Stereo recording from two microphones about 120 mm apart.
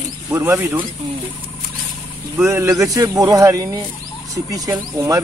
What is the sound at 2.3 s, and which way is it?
Speech, 25° right (ahead or behind).